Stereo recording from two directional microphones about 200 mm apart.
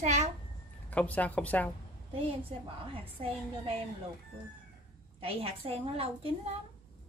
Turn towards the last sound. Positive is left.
turn(degrees=-30)  # may be behind; listen again after turning